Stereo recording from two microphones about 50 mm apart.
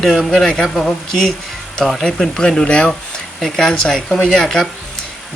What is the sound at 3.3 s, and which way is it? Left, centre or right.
Speech, centre.